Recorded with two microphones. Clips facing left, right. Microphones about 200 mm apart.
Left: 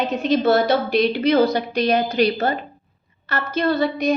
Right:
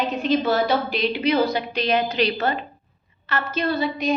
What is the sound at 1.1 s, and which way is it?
A woman's voice, 45° left (ahead or behind).